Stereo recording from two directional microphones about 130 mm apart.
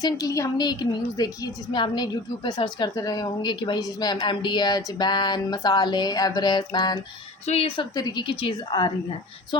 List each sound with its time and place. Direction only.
0.0 s a woman's voice: 25° left (ahead or behind)
7.4 s a woman's voice: 55° left (ahead or behind)
7.8 s a woman's voice: 30° left (ahead or behind)